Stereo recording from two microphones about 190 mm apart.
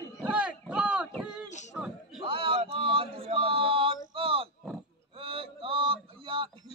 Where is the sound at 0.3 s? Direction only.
5° right (ahead or behind).